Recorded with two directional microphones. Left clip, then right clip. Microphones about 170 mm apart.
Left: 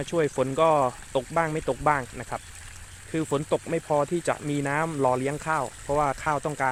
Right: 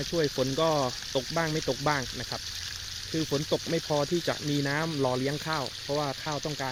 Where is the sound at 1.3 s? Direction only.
Centre (ahead or behind).